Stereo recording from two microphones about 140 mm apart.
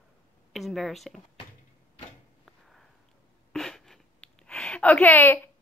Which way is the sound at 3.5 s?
5° left (ahead or behind).